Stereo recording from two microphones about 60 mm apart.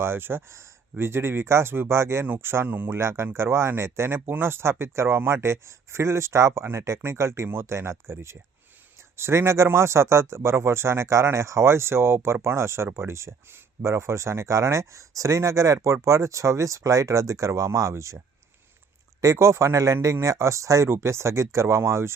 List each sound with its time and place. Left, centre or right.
0.0 s speech: right
2.2 s speech: right
3.0 s speech: right
19.2 s speech: right